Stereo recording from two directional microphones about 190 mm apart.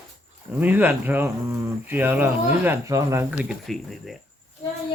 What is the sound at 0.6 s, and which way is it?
Speech, 10° right (ahead or behind).